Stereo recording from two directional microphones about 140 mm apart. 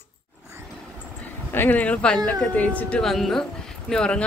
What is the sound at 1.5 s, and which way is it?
A woman's voice, 15° left (ahead or behind).